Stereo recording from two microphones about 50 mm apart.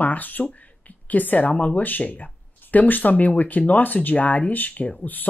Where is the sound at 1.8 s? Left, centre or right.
Left.